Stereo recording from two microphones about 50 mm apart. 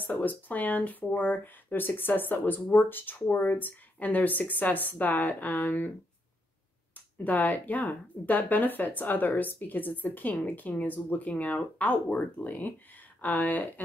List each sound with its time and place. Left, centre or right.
0.0 s speech: left
7.2 s speech: left